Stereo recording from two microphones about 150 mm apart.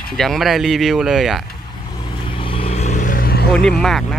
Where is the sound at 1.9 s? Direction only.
30° left (ahead or behind); by 3.5 s 90° left.